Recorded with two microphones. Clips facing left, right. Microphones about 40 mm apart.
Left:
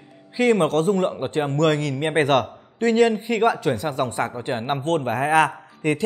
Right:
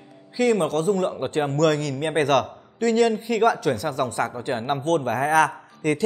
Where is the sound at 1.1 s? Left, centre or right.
Centre.